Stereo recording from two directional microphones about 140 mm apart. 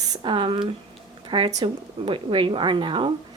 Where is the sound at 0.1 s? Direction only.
35° right (ahead or behind).